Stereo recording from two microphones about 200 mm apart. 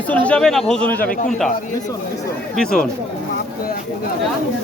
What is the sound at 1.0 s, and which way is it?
Speech, 45° left (ahead or behind).